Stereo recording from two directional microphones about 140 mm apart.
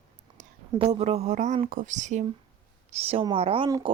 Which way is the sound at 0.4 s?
65° right (ahead or behind).